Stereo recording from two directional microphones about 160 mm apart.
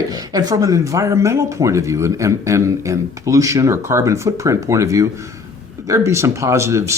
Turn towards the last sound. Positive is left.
turn(degrees=-15)  # may be behind; listen again after turning